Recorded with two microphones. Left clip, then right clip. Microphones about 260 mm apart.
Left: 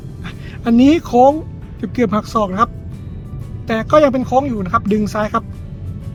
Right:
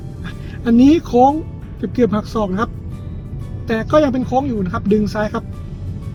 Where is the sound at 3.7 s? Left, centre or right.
Left.